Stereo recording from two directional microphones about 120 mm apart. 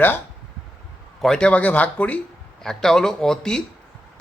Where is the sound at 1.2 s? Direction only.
5° left (ahead or behind).